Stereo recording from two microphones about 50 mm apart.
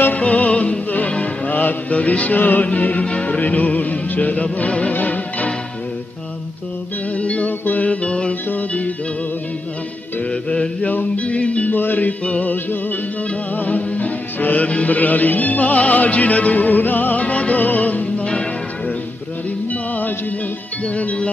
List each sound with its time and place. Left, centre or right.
0.2 s music: left
1.5 s music: left
3.3 s music: left
7.2 s music: left
7.6 s music: left
7.9 s music: left
10.5 s mantra: centre
10.9 s music: left
11.7 s music: left
12.3 s music: left
13.6 s music: left
19.7 s music: left